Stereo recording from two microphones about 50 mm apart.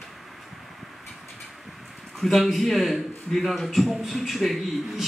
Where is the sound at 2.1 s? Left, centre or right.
Centre.